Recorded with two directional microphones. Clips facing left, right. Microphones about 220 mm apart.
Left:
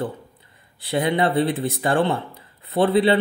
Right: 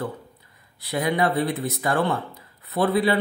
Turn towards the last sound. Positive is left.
turn(degrees=30)  # may be behind; listen again after turning